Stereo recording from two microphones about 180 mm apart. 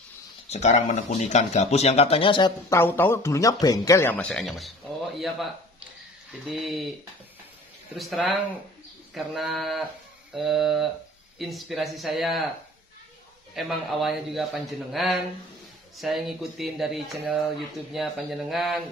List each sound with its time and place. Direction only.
0.5 s speech: 40° left (ahead or behind)
2.7 s speech: 10° left (ahead or behind)
6.4 s a man's voice: centre (ahead or behind)
8.0 s a man's voice: centre (ahead or behind)
13.6 s a man's voice: centre (ahead or behind)